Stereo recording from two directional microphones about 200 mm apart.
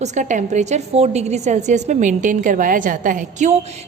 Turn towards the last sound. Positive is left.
turn(degrees=-40)  # may be behind; listen again after turning